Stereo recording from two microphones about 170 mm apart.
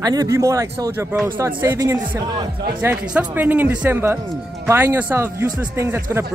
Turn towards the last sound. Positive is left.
turn(degrees=-15)  # may be behind; listen again after turning